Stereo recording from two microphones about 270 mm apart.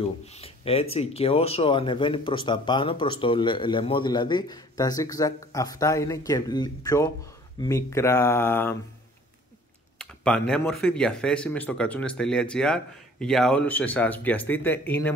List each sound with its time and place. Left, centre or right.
0.3 s speech: left
9.9 s speech: centre